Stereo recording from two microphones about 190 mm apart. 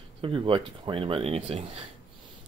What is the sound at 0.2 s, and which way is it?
Speech, 25° right (ahead or behind).